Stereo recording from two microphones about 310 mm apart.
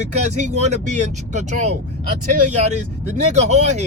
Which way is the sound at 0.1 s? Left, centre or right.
Right.